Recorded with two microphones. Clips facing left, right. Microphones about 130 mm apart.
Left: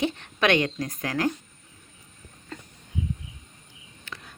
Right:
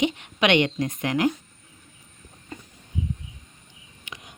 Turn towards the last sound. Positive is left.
turn(degrees=-15)  # may be behind; listen again after turning